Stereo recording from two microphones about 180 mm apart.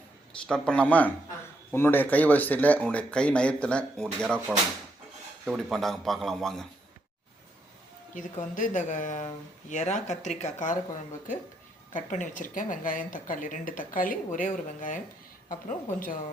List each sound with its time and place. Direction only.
0.4 s speech: 5° left (ahead or behind)
4.5 s a man's voice: 10° right (ahead or behind)
8.1 s speech: 45° left (ahead or behind)
11.9 s speech: 45° left (ahead or behind)